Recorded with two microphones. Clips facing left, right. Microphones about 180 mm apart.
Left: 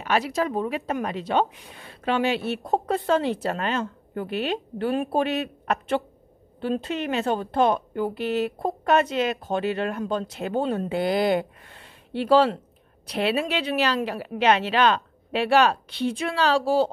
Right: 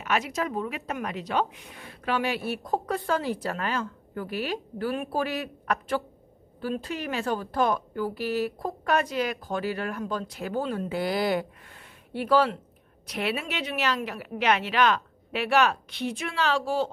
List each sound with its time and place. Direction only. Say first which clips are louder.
0.0 s speech: left 4 dB; 35° left (ahead or behind)